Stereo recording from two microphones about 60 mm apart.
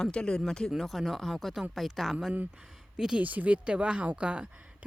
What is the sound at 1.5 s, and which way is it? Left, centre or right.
Speech, centre.